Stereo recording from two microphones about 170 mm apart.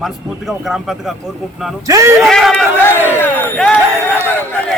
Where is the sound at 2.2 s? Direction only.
Centre (ahead or behind).